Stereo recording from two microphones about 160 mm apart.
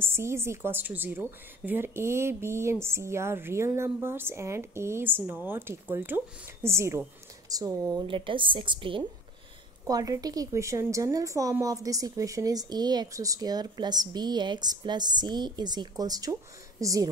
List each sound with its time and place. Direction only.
0.0 s a woman's voice: 15° right (ahead or behind)
8.0 s a woman's voice: 30° right (ahead or behind)